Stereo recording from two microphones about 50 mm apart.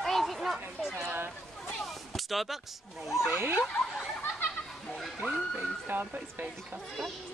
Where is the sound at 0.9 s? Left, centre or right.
Right.